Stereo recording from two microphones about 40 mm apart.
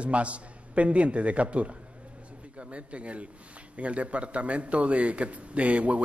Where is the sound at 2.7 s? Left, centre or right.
Right.